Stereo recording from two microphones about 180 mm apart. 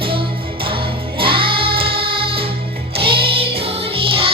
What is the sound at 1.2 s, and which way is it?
Music, 30° right (ahead or behind).